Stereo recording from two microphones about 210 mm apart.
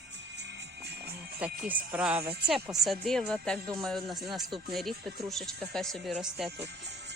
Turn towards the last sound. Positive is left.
turn(degrees=-5)  # may be behind; listen again after turning